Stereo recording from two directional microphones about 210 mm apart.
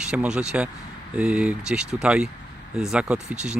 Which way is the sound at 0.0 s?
5° right (ahead or behind).